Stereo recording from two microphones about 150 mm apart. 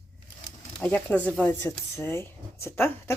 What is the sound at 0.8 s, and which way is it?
Speech, 10° left (ahead or behind).